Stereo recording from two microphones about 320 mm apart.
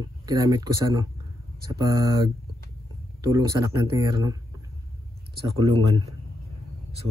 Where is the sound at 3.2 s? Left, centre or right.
Centre.